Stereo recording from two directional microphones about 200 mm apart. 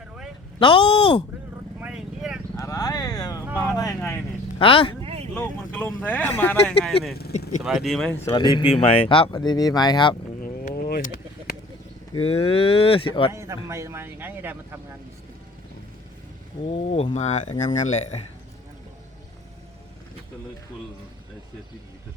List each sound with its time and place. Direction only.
0.6 s speech: 25° left (ahead or behind)
1.8 s vehicle: 5° right (ahead or behind)
2.6 s a sound: 15° left (ahead or behind)
3.8 s speech: 15° left (ahead or behind)
4.6 s speech: 25° left (ahead or behind)
5.0 s vehicle: 30° right (ahead or behind)
5.3 s speech: 10° left (ahead or behind)
8.2 s speech: 20° left (ahead or behind)
10.4 s a sound: 45° left (ahead or behind)
12.1 s speech: 30° left (ahead or behind)
13.3 s a man's voice: 15° right (ahead or behind)
16.7 s speech: 30° left (ahead or behind)